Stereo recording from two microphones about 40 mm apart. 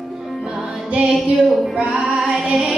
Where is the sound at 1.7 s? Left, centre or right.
Right.